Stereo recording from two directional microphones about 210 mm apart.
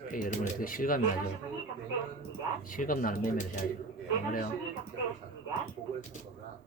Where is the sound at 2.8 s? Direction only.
40° left (ahead or behind).